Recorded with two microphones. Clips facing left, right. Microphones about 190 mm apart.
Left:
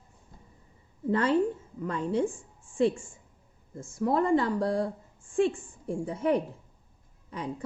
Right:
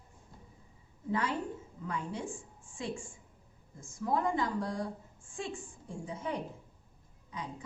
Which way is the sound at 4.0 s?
70° left (ahead or behind).